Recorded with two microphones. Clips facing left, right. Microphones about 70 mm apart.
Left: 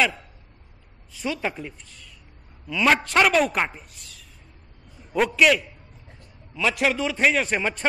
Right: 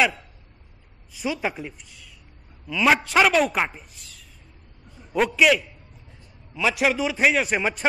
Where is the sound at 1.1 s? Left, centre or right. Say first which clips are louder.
Right 1 dB; centre.